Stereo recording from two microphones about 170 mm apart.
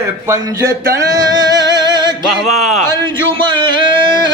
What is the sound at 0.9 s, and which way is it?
Male singing, 20° right (ahead or behind).